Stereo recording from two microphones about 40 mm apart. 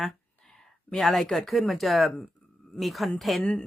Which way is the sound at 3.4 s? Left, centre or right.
Left.